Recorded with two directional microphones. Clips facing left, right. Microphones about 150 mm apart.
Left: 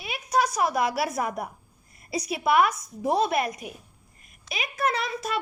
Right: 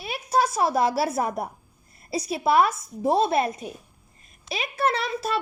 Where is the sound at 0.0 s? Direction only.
30° right (ahead or behind).